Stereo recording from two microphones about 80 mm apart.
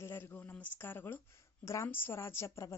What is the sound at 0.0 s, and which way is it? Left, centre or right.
Speech, left.